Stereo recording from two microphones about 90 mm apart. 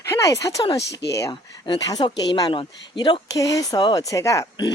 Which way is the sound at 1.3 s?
60° left (ahead or behind).